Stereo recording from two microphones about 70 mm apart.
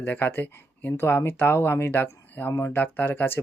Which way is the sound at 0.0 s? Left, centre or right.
Left.